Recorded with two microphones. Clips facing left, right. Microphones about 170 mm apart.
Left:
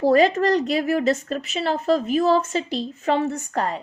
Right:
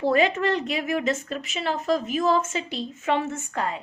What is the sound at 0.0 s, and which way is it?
A woman's voice, 40° left (ahead or behind).